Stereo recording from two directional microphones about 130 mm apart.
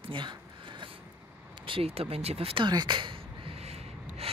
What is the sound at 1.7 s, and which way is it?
Speech, 50° right (ahead or behind).